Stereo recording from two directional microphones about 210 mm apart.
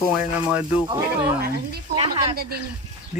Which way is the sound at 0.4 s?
5° right (ahead or behind).